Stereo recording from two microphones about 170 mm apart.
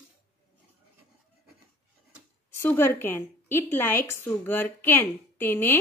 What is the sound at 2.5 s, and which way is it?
A woman's voice, 15° left (ahead or behind).